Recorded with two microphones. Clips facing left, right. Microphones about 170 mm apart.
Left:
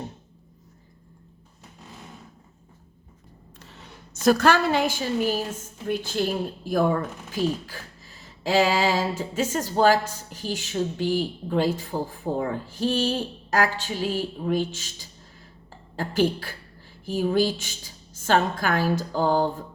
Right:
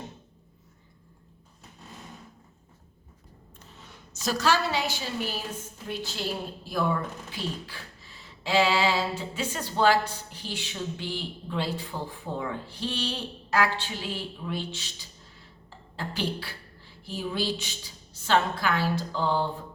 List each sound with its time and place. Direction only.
3.6 s a woman's voice: 75° left (ahead or behind); by 19.5 s 45° left (ahead or behind)